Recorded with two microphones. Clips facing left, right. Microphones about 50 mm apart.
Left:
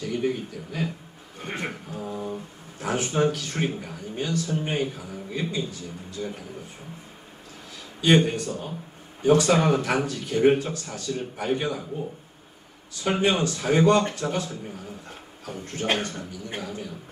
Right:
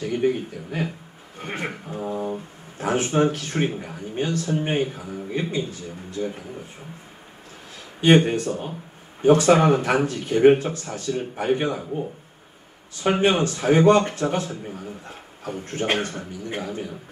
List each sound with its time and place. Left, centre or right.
0.0 s a man's voice: right
1.9 s mantra: right
2.8 s speech: right
8.0 s speech: right